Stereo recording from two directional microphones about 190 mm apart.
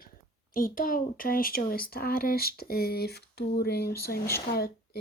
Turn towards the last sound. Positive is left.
turn(degrees=55)  # may be behind; listen again after turning